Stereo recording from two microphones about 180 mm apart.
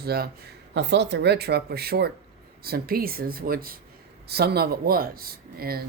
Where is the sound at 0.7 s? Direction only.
75° right (ahead or behind).